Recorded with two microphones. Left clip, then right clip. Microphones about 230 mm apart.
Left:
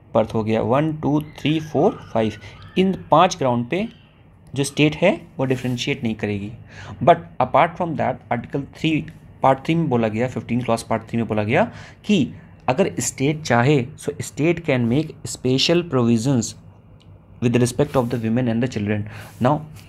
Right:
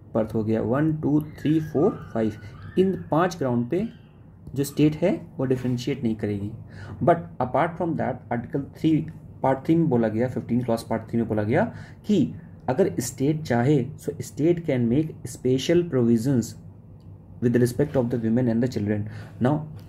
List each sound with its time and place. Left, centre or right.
0.1 s speech: centre